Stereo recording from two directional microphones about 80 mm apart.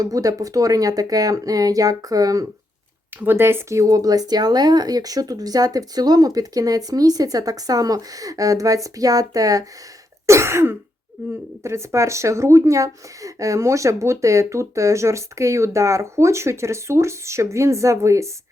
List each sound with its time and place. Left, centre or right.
0.0 s speech: right
3.2 s speech: right
3.8 s speech: right
10.2 s speech: right